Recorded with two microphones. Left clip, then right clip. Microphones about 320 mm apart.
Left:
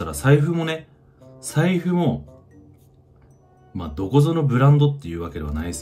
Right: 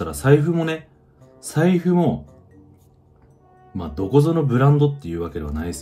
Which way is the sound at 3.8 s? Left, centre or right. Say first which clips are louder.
Right 3 dB; centre.